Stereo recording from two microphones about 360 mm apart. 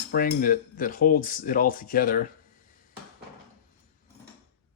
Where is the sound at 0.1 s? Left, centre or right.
Left.